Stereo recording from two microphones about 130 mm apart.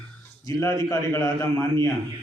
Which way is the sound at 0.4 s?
25° left (ahead or behind).